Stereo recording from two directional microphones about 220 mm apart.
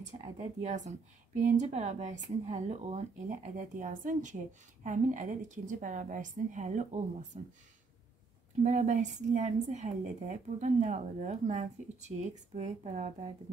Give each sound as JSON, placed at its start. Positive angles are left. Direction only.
{"t": 0.4, "sound": "a woman's voice", "side_deg": -30}
{"t": 8.6, "sound": "a woman's voice", "side_deg": -30}